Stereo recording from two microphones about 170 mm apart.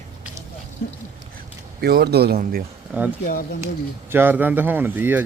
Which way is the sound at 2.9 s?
10° right (ahead or behind).